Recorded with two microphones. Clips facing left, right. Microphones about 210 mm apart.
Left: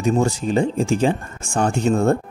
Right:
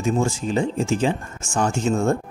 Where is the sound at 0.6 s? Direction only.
35° left (ahead or behind).